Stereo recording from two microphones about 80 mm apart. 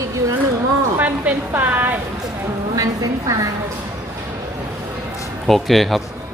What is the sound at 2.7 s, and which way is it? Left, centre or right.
Speech, right.